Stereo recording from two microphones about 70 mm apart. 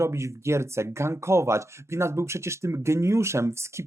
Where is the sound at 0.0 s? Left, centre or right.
Right.